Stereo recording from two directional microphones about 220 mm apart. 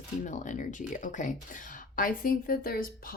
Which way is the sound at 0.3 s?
35° left (ahead or behind).